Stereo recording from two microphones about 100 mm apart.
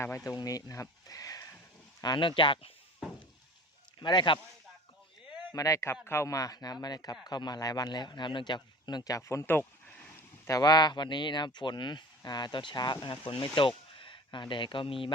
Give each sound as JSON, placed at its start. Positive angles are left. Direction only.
{"t": 0.3, "sound": "speech", "side_deg": 35}
{"t": 2.0, "sound": "speech", "side_deg": 50}
{"t": 4.0, "sound": "speech", "side_deg": 50}
{"t": 5.5, "sound": "speech", "side_deg": 35}
{"t": 10.4, "sound": "speech", "side_deg": 40}